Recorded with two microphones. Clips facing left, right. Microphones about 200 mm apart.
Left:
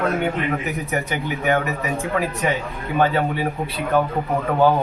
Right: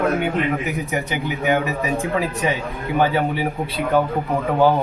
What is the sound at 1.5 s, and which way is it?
A man's voice, 20° right (ahead or behind).